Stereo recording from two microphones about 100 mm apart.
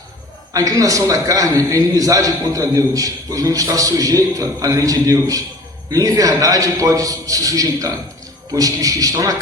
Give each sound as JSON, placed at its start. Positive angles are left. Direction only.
{"t": 0.5, "sound": "a man's voice", "side_deg": -35}